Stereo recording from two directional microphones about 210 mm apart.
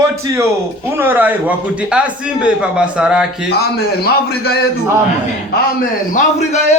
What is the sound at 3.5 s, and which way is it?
A man's voice, 50° left (ahead or behind).